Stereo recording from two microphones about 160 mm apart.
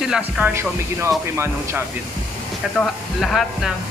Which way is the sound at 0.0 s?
5° right (ahead or behind).